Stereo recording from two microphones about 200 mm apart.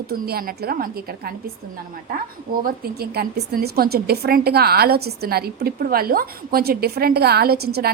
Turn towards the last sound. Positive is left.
turn(degrees=-50)  # may be behind; listen again after turning